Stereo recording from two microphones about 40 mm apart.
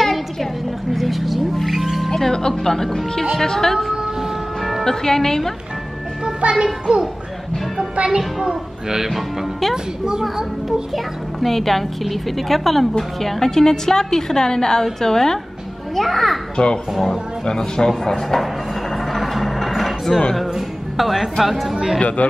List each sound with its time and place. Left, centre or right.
0.0 s a sound: centre
0.9 s music: centre
2.0 s a woman's voice: centre
4.8 s a woman's voice: centre
6.6 s a child's voice: centre
8.5 s speech: centre
9.1 s a woman's voice: centre
11.3 s a woman's voice: centre
16.6 s speech: left
16.9 s a woman's voice: centre
17.5 s a woman's voice: centre
19.1 s music: centre
21.0 s a woman's voice: centre
22.0 s speech: left